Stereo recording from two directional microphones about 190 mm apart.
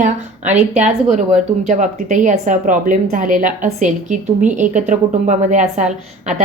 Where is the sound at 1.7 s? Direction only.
40° right (ahead or behind).